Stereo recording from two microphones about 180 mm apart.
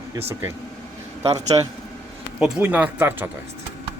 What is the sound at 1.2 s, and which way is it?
Speech, 20° right (ahead or behind).